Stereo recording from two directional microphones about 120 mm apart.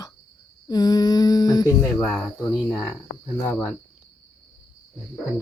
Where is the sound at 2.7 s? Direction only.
30° left (ahead or behind).